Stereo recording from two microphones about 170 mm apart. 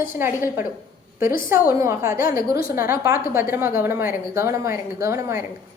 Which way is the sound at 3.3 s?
10° right (ahead or behind).